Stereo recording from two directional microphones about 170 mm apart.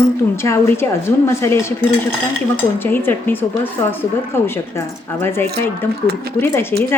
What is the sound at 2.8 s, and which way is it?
A woman's voice, 10° left (ahead or behind).